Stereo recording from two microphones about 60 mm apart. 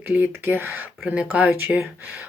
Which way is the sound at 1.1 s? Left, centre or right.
Right.